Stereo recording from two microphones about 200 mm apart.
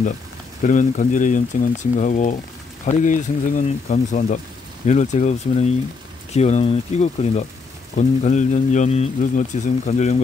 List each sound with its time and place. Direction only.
0.6 s speech: 40° left (ahead or behind)